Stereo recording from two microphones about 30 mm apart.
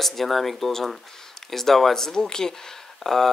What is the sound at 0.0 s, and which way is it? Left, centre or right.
Speech, centre.